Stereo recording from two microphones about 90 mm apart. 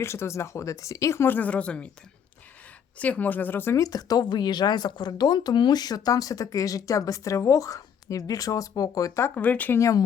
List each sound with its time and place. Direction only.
0.0 s speech: 30° left (ahead or behind); by 1.9 s 10° left (ahead or behind)
3.0 s speech: 20° left (ahead or behind)
3.8 s speech: 45° left (ahead or behind)
9.3 s speech: 20° left (ahead or behind)
9.7 s speech: 35° left (ahead or behind)